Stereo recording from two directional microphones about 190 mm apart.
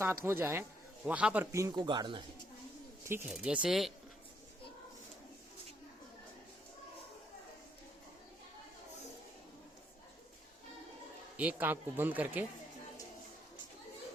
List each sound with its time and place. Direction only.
0.0 s speech: 15° right (ahead or behind)
3.1 s speech: 5° right (ahead or behind)
11.3 s speech: 5° right (ahead or behind)